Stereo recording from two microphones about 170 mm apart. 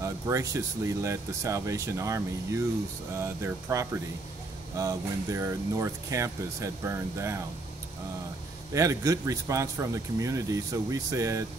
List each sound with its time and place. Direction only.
0.0 s speech: 20° right (ahead or behind)
8.7 s speech: 20° right (ahead or behind)